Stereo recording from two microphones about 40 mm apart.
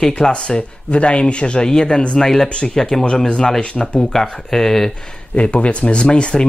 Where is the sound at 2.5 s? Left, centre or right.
Left.